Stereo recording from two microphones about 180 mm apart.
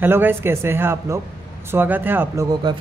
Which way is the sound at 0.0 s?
10° right (ahead or behind).